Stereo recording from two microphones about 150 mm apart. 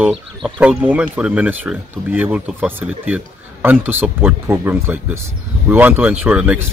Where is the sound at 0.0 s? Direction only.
5° right (ahead or behind).